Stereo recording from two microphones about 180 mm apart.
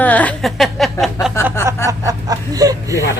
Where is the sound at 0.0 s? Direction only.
10° left (ahead or behind).